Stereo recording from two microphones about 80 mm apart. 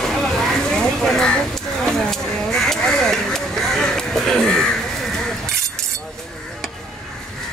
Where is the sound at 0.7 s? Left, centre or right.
Centre.